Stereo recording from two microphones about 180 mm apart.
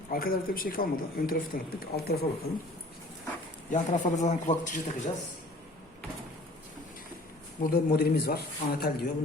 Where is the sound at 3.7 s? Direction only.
40° left (ahead or behind).